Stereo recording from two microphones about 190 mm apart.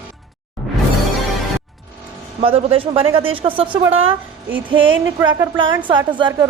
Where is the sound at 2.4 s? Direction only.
30° right (ahead or behind).